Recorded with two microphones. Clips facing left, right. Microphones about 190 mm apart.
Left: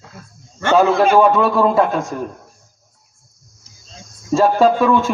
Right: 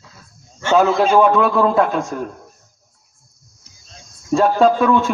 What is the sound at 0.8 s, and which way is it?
Speech, 55° left (ahead or behind).